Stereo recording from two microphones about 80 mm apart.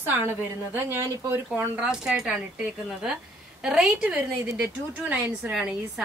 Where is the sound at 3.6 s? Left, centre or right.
Centre.